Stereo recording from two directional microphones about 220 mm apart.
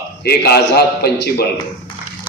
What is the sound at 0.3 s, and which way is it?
A man's voice, 45° left (ahead or behind).